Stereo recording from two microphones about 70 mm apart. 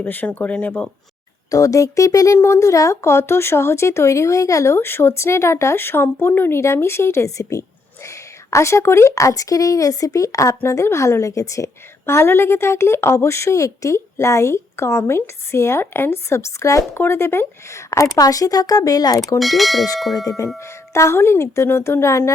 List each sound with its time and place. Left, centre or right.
0.0 s speech: left
1.5 s speech: left
10.6 s a woman's voice: left
18.2 s speech: left
19.4 s speech: centre
20.2 s speech: left